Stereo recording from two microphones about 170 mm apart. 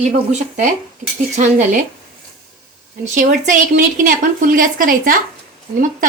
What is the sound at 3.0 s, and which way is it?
A woman's voice, 50° right (ahead or behind).